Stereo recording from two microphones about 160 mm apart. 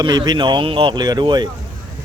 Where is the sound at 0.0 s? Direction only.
25° right (ahead or behind).